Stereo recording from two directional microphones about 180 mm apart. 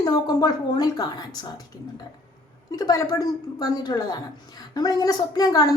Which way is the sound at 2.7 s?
20° left (ahead or behind).